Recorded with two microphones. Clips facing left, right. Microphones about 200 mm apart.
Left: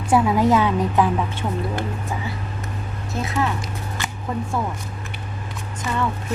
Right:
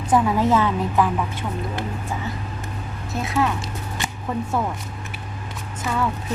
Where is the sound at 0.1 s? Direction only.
10° left (ahead or behind).